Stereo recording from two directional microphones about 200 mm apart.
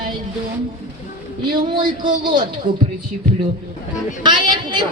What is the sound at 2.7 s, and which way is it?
Speech, 40° right (ahead or behind).